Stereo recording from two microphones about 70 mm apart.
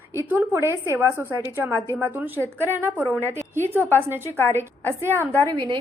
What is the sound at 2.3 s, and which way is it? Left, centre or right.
Speech, left.